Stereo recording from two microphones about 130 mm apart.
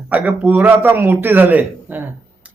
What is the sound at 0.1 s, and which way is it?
Speech, 10° right (ahead or behind).